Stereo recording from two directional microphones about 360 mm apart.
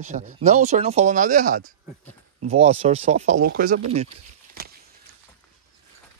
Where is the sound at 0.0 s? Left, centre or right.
Right.